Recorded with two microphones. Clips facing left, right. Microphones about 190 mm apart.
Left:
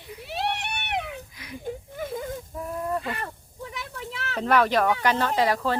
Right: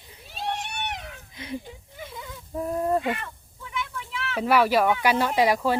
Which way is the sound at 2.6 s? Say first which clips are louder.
Right 6 dB; 30° right (ahead or behind).